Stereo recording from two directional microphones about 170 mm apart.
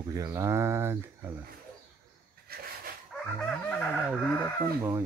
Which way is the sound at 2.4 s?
60° right (ahead or behind).